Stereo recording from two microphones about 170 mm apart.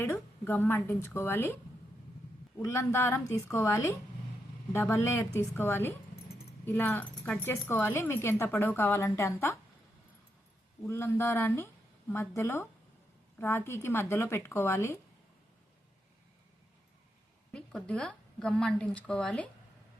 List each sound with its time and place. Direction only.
0.0 s a woman's voice: 10° left (ahead or behind)
2.6 s speech: 15° left (ahead or behind)
10.8 s speech: 15° left (ahead or behind)
17.5 s a woman's voice: 5° left (ahead or behind)